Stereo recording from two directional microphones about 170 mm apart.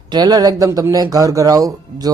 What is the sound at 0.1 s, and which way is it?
Speech, 25° right (ahead or behind).